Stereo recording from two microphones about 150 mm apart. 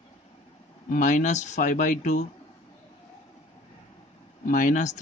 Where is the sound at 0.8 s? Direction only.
55° left (ahead or behind).